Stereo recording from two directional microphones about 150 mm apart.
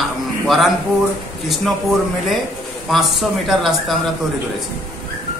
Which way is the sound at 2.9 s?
Centre (ahead or behind).